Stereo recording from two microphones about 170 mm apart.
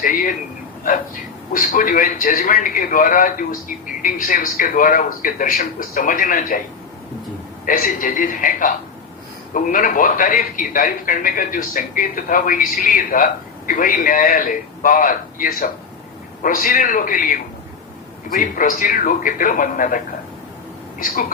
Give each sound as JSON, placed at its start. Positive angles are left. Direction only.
{"t": 0.0, "sound": "a man's voice", "side_deg": 55}
{"t": 1.5, "sound": "a man's voice", "side_deg": 55}
{"t": 7.6, "sound": "a man's voice", "side_deg": 50}
{"t": 21.0, "sound": "a man's voice", "side_deg": 55}